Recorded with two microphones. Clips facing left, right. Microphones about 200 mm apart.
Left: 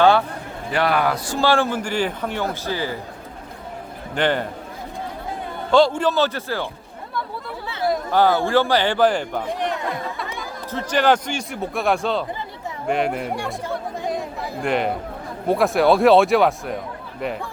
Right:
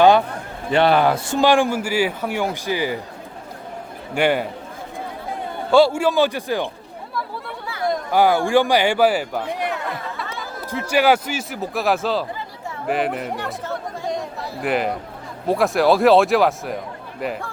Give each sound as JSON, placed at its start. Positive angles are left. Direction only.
{"t": 0.7, "sound": "a man's voice", "side_deg": -25}
{"t": 4.1, "sound": "a man's voice", "side_deg": -10}
{"t": 5.7, "sound": "a man's voice", "side_deg": -10}
{"t": 8.1, "sound": "a man's voice", "side_deg": -15}
{"t": 13.3, "sound": "speech", "side_deg": 10}
{"t": 14.6, "sound": "a man's voice", "side_deg": -5}